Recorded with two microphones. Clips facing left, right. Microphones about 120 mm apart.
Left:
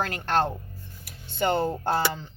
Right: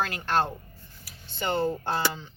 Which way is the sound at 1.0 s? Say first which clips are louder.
Left 5 dB; 50° left (ahead or behind).